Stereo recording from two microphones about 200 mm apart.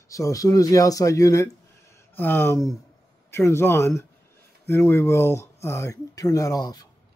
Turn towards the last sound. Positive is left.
turn(degrees=20)  # may be behind; listen again after turning